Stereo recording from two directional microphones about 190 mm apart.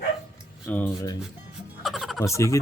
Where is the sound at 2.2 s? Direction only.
15° left (ahead or behind).